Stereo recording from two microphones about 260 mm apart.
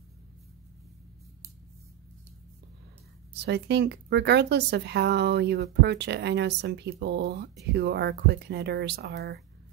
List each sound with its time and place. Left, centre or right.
3.4 s speech: right